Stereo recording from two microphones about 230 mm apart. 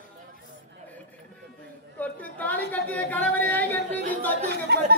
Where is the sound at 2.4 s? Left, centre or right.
Centre.